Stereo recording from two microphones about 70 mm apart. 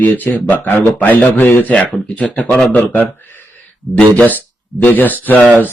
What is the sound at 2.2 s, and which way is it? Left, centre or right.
Speech, centre.